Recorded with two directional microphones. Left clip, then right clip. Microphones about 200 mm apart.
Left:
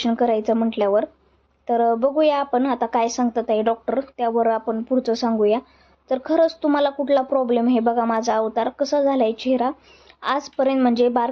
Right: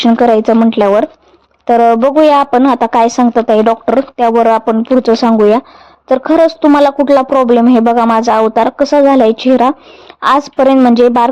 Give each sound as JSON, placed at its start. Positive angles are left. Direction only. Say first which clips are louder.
{"t": 0.0, "sound": "a woman's voice", "louder": "right 12 dB", "side_deg": -35}